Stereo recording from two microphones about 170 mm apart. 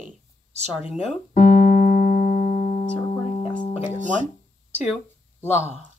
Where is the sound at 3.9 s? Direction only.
45° right (ahead or behind).